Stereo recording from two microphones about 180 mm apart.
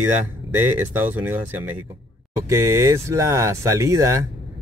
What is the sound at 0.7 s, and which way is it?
Speech, 10° right (ahead or behind).